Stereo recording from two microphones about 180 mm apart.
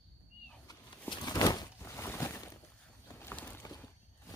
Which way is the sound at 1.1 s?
20° left (ahead or behind).